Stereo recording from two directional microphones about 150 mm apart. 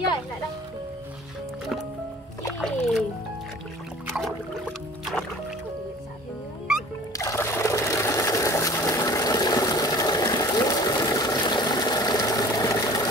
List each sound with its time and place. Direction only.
2.6 s music: 5° left (ahead or behind)
4.2 s music: centre (ahead or behind)
7.2 s water: 20° left (ahead or behind)